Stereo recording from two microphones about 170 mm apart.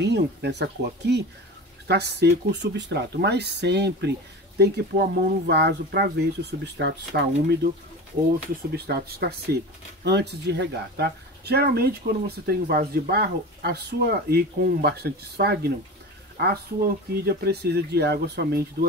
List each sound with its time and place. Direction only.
0.0 s speech: 85° right
8.3 s speech: 65° right (ahead or behind)
10.0 s speech: 80° right; by 18.9 s 65° right (ahead or behind)